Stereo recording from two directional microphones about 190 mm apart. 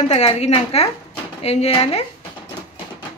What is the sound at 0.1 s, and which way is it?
Speech, 30° left (ahead or behind).